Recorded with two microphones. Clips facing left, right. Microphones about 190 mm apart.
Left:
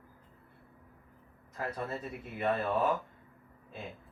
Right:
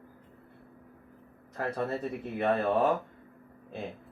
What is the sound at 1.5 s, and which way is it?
Speech, 40° right (ahead or behind).